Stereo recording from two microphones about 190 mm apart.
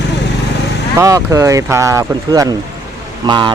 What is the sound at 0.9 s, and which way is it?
Speech, 15° right (ahead or behind).